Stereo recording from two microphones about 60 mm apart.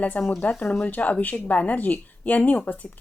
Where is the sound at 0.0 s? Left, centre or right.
Left.